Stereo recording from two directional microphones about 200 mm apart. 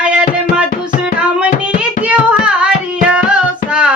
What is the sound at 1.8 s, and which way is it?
Music, 5° right (ahead or behind).